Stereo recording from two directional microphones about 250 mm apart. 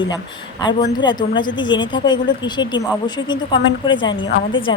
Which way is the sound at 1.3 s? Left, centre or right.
Centre.